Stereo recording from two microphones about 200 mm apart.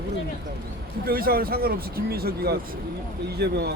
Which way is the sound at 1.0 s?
50° right (ahead or behind).